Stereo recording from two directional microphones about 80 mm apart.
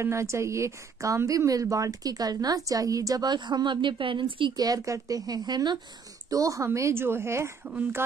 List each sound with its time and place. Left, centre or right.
0.0 s a woman's voice: right
4.6 s a woman's voice: right
6.3 s a woman's voice: right